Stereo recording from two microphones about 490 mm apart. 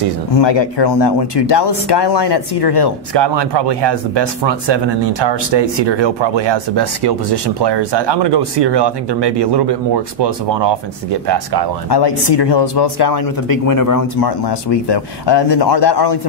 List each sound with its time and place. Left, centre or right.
0.4 s speech: left
3.2 s speech: right
11.9 s speech: left
13.7 s speech: left
14.7 s speech: left